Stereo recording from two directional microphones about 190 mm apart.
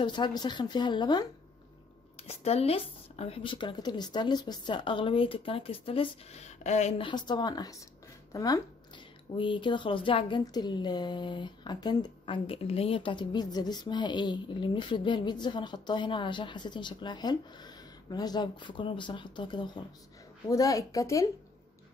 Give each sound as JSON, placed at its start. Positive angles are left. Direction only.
{"t": 0.0, "sound": "speech", "side_deg": 25}
{"t": 2.1, "sound": "a woman's voice", "side_deg": 35}